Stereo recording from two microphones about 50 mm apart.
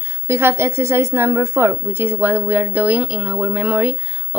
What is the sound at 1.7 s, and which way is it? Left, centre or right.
Speech, right.